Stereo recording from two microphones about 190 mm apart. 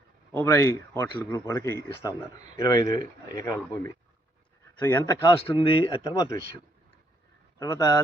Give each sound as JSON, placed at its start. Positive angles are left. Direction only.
{"t": 0.3, "sound": "speech", "side_deg": 15}
{"t": 4.8, "sound": "speech", "side_deg": 10}
{"t": 7.6, "sound": "speech", "side_deg": 20}